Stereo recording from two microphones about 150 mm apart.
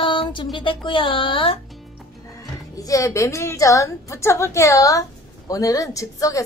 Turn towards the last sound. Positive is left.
turn(degrees=20)  # may be behind; listen again after turning